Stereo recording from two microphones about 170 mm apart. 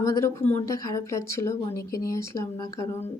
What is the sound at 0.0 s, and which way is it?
Speech, 15° left (ahead or behind).